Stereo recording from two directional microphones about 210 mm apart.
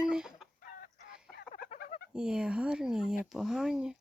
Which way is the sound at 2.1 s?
5° right (ahead or behind).